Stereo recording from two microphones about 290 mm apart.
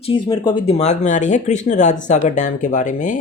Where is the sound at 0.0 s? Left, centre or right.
Centre.